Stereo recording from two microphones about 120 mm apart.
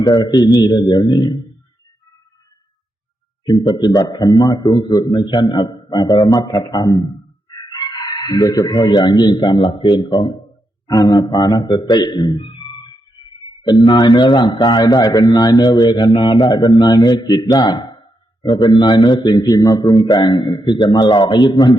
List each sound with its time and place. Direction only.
0.0 s speech: 35° left (ahead or behind)
3.4 s speech: 40° left (ahead or behind)